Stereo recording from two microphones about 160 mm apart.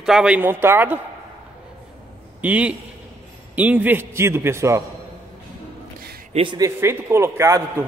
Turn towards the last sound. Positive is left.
turn(degrees=-15)  # may be behind; listen again after turning